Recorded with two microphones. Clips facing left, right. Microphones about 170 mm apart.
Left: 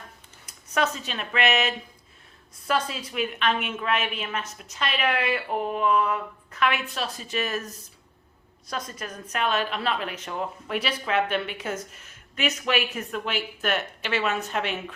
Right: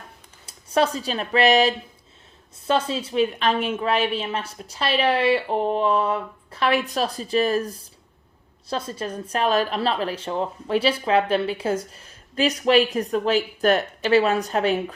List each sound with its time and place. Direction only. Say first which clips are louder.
0.4 s a woman's voice: right 5 dB; 30° right (ahead or behind)